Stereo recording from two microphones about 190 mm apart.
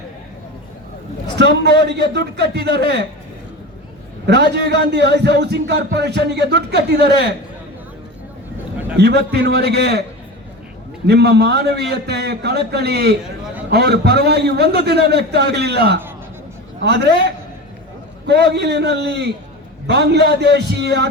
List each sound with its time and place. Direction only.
1.4 s a man's voice: 60° right (ahead or behind)
4.3 s a man's voice: 60° right (ahead or behind)
9.0 s a man's voice: 60° right (ahead or behind)
11.0 s a man's voice: 60° right (ahead or behind)
18.3 s a man's voice: 60° right (ahead or behind)